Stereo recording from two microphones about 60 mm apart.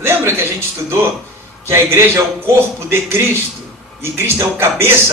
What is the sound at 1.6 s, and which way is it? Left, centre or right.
A man's voice, right.